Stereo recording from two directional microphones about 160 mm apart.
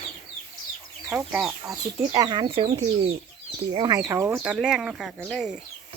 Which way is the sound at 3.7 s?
25° right (ahead or behind).